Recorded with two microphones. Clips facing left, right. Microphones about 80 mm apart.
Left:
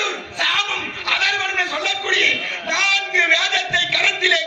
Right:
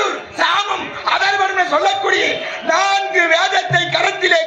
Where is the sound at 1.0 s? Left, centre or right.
Right.